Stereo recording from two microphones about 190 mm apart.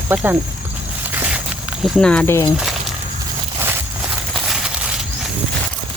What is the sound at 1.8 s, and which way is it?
Speech, centre (ahead or behind).